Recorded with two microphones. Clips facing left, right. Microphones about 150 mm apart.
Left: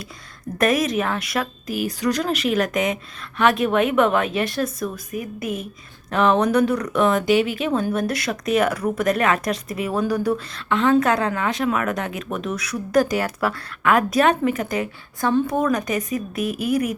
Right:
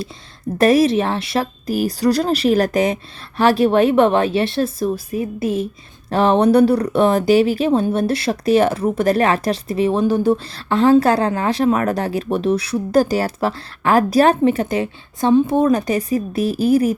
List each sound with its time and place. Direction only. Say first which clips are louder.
0.6 s speech: right 6 dB; 30° right (ahead or behind)